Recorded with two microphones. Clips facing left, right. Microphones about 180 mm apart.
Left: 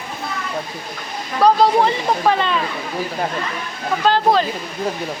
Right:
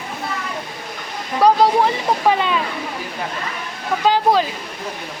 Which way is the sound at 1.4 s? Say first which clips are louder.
Even; 10° right (ahead or behind).